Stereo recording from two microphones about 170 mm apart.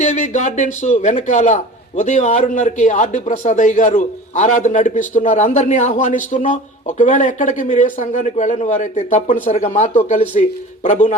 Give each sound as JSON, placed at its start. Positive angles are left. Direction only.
{"t": 0.0, "sound": "speech", "side_deg": 45}